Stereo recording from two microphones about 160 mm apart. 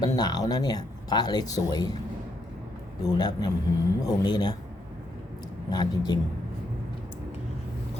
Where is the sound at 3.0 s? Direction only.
25° left (ahead or behind).